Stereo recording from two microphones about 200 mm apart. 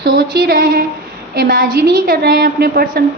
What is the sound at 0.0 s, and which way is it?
A woman's voice, 50° right (ahead or behind).